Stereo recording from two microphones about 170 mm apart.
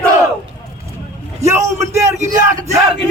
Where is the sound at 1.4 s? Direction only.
15° right (ahead or behind).